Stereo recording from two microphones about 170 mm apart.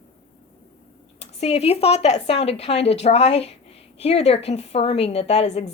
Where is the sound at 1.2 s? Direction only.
40° left (ahead or behind).